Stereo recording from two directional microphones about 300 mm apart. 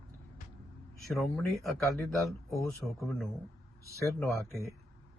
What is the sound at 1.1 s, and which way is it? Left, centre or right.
Speech, centre.